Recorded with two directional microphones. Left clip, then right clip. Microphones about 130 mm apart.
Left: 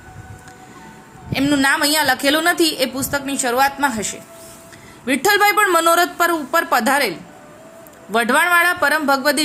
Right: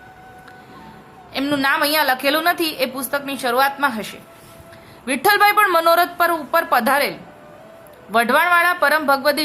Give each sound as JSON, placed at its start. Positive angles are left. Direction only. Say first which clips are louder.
{"t": 1.3, "sound": "a woman's voice", "louder": "left 2 dB", "side_deg": 10}
{"t": 8.1, "sound": "a woman's voice", "louder": "even", "side_deg": 15}